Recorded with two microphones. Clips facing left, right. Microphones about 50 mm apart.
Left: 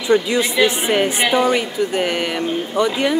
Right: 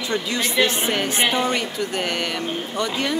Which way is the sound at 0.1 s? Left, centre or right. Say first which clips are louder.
Left 8 dB; centre.